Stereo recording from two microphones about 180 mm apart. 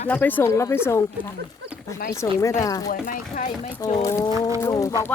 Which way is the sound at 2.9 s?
45° left (ahead or behind).